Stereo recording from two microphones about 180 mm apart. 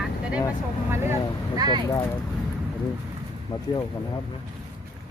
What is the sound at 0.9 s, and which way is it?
Speech, 15° right (ahead or behind).